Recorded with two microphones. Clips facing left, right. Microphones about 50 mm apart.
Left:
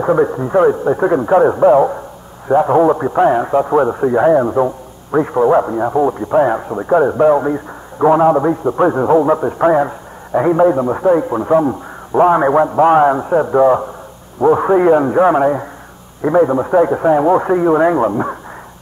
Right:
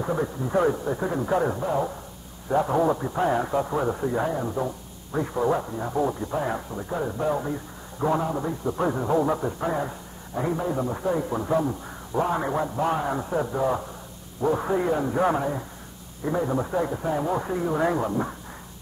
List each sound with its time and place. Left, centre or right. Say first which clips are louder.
0.0 s a man's voice: left 13 dB; left
1.6 s a man's voice: left 16 dB; left
2.5 s a man's voice: left 11 dB; left
4.3 s a man's voice: left 15 dB; left
13.1 s a man's voice: left 13 dB; left